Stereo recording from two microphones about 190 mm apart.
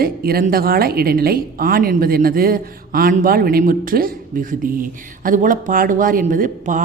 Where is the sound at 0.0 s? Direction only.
50° right (ahead or behind).